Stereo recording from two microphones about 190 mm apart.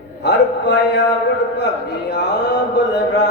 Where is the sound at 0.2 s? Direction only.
65° left (ahead or behind).